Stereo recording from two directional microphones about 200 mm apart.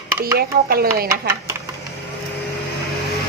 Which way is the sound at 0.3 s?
50° right (ahead or behind).